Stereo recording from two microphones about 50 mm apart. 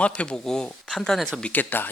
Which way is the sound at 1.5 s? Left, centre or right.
Left.